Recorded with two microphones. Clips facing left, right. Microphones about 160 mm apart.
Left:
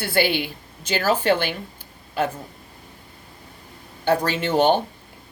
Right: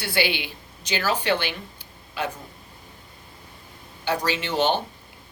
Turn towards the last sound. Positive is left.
turn(degrees=50)  # may be behind; listen again after turning